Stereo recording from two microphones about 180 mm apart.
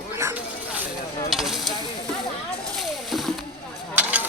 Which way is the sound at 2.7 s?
Centre (ahead or behind).